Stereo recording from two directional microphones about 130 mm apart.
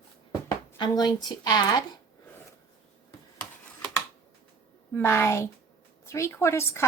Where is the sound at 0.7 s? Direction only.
35° left (ahead or behind).